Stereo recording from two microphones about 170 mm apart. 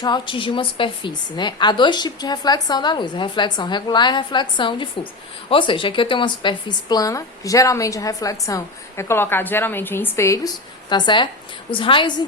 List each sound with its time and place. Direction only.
0.0 s a woman's voice: 25° left (ahead or behind)